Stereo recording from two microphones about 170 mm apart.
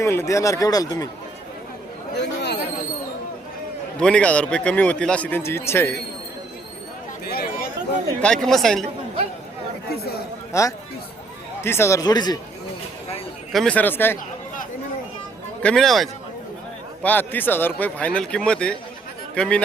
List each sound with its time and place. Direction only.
0.0 s speech: 15° left (ahead or behind)
2.1 s chatter: 80° left
4.0 s a man's voice: 5° left (ahead or behind)
7.3 s chatter: 65° left (ahead or behind)
8.2 s speech: 5° left (ahead or behind)
9.9 s chatter: 65° left (ahead or behind)
10.5 s speech: 20° left (ahead or behind)
13.5 s a man's voice: 5° left (ahead or behind)
15.6 s a man's voice: 5° left (ahead or behind)